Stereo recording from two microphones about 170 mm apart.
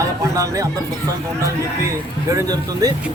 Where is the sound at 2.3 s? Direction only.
20° right (ahead or behind).